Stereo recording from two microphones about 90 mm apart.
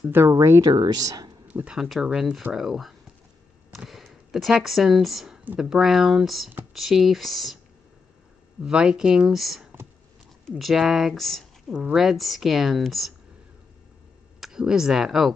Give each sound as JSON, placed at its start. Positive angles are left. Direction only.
{"t": 0.1, "sound": "speech", "side_deg": -30}
{"t": 0.7, "sound": "speech", "side_deg": -50}
{"t": 1.5, "sound": "speech", "side_deg": -15}
{"t": 1.8, "sound": "speech", "side_deg": -5}
{"t": 8.6, "sound": "speech", "side_deg": -10}
{"t": 14.4, "sound": "speech", "side_deg": -5}